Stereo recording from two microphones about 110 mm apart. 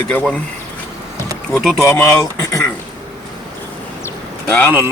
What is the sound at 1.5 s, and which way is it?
Speech, 5° left (ahead or behind).